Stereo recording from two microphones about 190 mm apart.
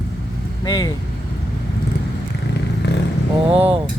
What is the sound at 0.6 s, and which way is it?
Speech, 20° left (ahead or behind).